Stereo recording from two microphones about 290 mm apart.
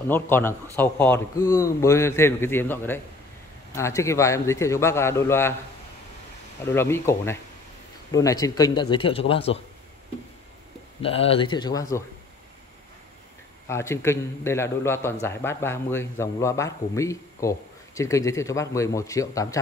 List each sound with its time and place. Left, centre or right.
0.1 s a man's voice: centre
6.7 s a man's voice: centre
11.0 s a man's voice: centre
13.7 s a man's voice: centre